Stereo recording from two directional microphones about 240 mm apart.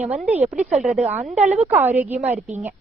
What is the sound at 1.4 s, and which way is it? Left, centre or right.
Speech, right.